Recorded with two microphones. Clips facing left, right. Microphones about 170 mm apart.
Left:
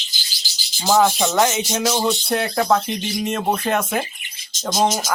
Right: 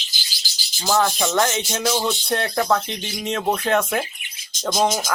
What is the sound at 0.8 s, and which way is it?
Speech, 10° left (ahead or behind).